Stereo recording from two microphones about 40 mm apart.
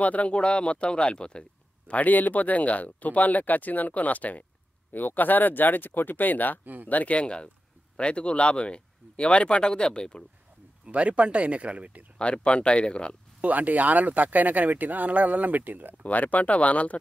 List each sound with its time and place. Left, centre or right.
0.0 s speech: left
1.9 s speech: left
4.9 s speech: left
6.6 s speech: right
6.9 s speech: left
10.9 s speech: right
12.2 s speech: left
13.4 s speech: right
16.0 s speech: left